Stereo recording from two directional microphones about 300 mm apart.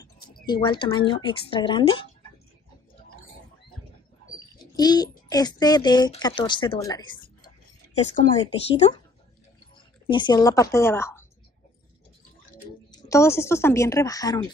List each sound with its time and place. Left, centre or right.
0.0 s speech: centre
4.7 s speech: centre
7.4 s speech: left; by 11.2 s centre
12.9 s speech: centre